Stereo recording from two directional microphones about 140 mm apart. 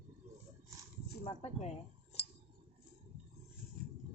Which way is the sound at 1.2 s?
50° left (ahead or behind).